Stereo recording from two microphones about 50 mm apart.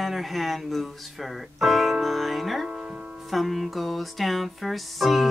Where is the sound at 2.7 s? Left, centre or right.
Centre.